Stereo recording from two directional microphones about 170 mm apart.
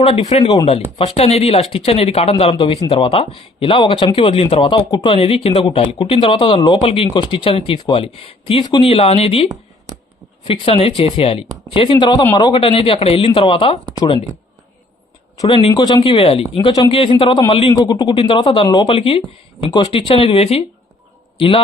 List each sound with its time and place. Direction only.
0.0 s a man's voice: 35° left (ahead or behind)
15.4 s speech: 30° left (ahead or behind)
15.7 s a man's voice: 20° left (ahead or behind)
16.1 s a man's voice: 35° left (ahead or behind)
18.9 s a man's voice: 35° left (ahead or behind)